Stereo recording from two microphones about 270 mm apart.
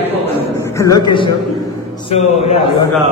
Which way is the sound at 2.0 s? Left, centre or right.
Left.